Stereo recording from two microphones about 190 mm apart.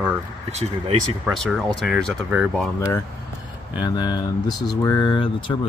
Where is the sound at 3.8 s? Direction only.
20° left (ahead or behind).